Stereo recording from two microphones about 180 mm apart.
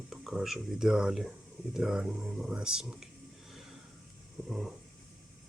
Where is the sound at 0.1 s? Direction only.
Centre (ahead or behind).